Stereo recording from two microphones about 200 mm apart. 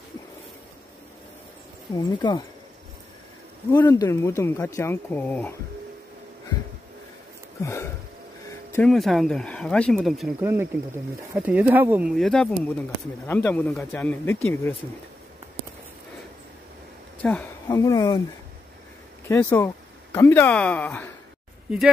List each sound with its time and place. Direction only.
2.0 s speech: 20° left (ahead or behind)
3.7 s speech: 20° left (ahead or behind)
7.6 s speech: 15° left (ahead or behind)
10.4 s speech: 10° right (ahead or behind); by 14.8 s 10° left (ahead or behind)
17.2 s speech: 5° left (ahead or behind)
17.6 s speech: 20° left (ahead or behind)
19.2 s speech: 10° left (ahead or behind)